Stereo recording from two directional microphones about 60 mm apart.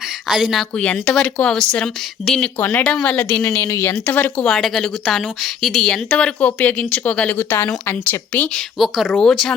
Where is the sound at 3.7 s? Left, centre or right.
Left.